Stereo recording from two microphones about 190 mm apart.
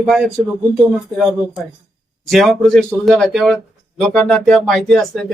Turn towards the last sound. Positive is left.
turn(degrees=0)  # may be behind; listen again after turning